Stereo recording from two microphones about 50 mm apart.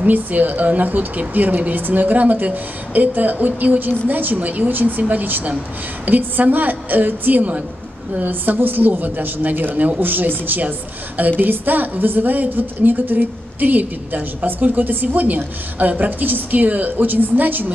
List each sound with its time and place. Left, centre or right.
0.0 s a woman's voice: right